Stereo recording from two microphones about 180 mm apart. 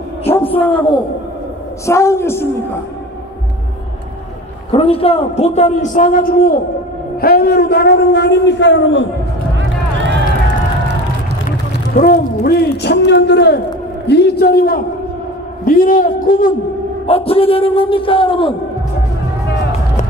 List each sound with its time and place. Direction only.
0.3 s a man's voice: 10° left (ahead or behind)
1.9 s a man's voice: 15° left (ahead or behind)
4.6 s a man's voice: 30° left (ahead or behind); by 9.1 s 90° left
9.6 s run: 80° right
11.4 s a sound: 50° left (ahead or behind); by 13.6 s 75° left (ahead or behind)
14.0 s a man's voice: 65° left (ahead or behind); by 16.5 s 50° left (ahead or behind)
17.0 s a man's voice: 35° left (ahead or behind)